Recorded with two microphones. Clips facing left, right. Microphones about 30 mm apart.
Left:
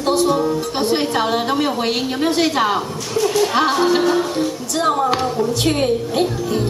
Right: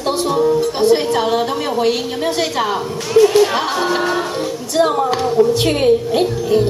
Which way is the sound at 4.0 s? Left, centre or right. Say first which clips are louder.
Left 1 dB; centre.